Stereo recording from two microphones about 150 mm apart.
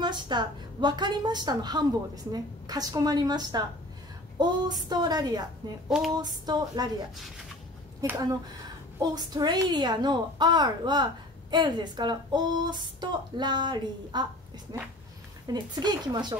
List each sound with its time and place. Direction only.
0.0 s a woman's voice: 30° right (ahead or behind)
5.9 s a sound: centre (ahead or behind)
6.1 s a woman's voice: 25° right (ahead or behind)
8.0 s a woman's voice: 25° right (ahead or behind)
15.4 s a woman's voice: 30° right (ahead or behind)